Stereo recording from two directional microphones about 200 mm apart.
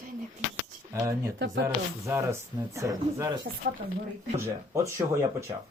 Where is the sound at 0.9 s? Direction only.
15° right (ahead or behind).